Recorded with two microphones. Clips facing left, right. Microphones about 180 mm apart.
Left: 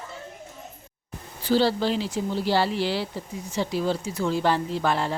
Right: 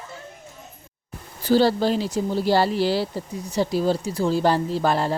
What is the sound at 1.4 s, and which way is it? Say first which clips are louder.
Speech: right 3 dB; 45° right (ahead or behind).